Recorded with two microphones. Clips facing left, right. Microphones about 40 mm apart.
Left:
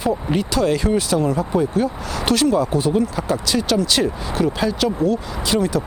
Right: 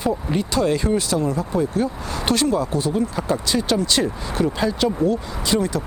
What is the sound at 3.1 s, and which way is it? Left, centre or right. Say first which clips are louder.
Speech: left 1 dB; centre.